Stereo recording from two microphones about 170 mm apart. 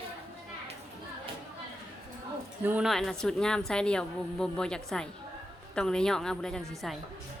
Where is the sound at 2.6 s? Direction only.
5° right (ahead or behind).